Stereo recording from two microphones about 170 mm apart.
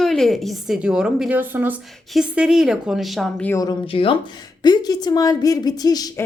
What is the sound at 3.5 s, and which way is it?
Speech, 20° left (ahead or behind).